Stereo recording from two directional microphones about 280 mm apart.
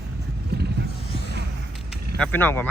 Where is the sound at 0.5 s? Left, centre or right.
Right.